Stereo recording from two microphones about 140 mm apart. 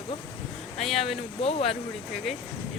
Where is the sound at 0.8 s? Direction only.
Centre (ahead or behind).